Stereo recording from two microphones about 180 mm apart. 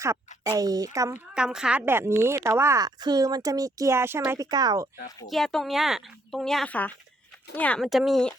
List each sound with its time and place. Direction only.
0.4 s speech: 20° right (ahead or behind)
1.3 s a woman's voice: 5° right (ahead or behind); by 4.9 s 20° right (ahead or behind)
5.3 s speech: centre (ahead or behind)